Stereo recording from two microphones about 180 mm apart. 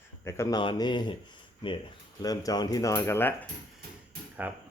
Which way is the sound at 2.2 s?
20° left (ahead or behind).